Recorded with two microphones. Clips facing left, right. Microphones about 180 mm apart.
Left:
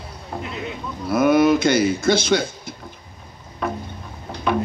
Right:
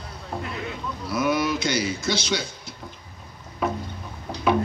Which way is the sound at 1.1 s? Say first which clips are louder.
Left 8 dB; 55° left (ahead or behind).